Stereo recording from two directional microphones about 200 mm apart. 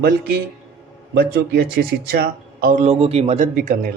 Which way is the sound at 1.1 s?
50° right (ahead or behind).